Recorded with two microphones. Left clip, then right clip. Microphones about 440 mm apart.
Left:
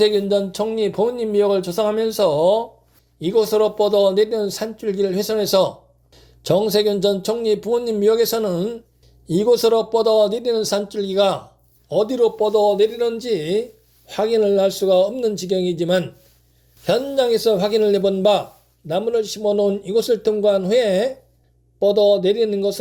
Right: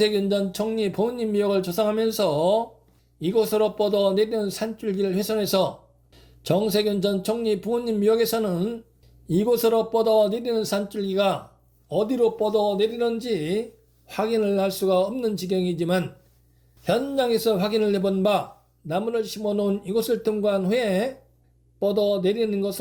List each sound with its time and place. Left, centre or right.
0.0 s speech: left